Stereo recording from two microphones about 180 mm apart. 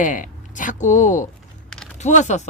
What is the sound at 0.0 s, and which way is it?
Speech, 45° left (ahead or behind).